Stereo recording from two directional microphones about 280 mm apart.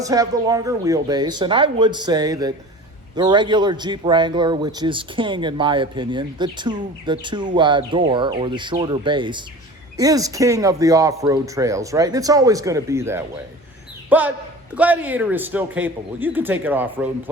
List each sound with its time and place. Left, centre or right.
0.0 s a man's voice: centre